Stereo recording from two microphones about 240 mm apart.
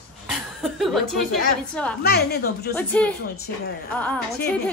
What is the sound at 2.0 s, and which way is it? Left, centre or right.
Speech, left.